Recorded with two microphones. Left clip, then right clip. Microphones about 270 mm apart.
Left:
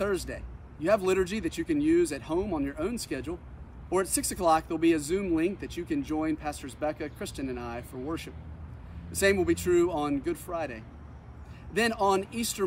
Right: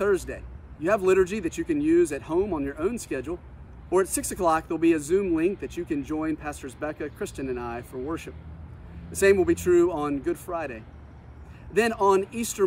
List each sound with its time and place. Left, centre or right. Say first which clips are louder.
0.0 s speech: right 6 dB; centre